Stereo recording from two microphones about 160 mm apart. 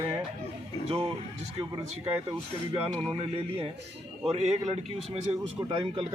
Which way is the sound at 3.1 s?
40° right (ahead or behind).